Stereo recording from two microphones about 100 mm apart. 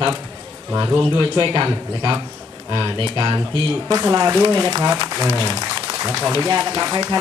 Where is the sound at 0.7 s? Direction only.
35° right (ahead or behind).